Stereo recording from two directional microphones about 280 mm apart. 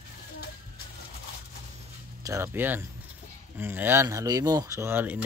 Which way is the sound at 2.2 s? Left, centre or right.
Centre.